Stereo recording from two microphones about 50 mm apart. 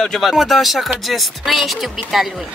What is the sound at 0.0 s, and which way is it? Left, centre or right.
Speech, centre.